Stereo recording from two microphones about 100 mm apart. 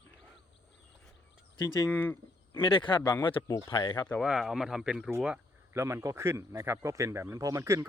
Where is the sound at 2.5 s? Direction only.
55° left (ahead or behind).